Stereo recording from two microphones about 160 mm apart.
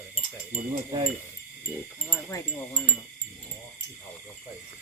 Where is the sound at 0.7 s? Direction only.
35° right (ahead or behind).